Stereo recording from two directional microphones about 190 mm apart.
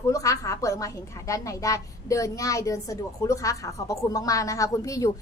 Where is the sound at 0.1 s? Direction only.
15° left (ahead or behind).